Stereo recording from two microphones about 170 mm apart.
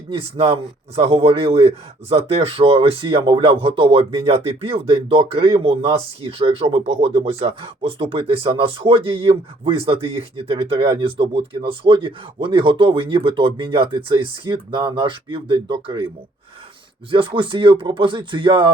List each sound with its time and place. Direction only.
0.1 s speech: 35° right (ahead or behind)
17.1 s speech: 30° right (ahead or behind)